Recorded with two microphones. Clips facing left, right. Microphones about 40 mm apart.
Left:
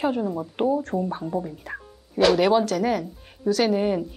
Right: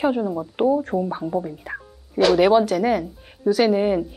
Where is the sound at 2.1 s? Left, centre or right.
Centre.